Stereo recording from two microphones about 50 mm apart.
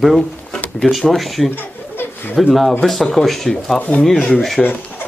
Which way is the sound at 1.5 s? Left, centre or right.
Left.